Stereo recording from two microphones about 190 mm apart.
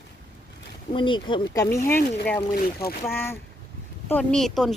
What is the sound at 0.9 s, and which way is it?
Speech, 25° left (ahead or behind).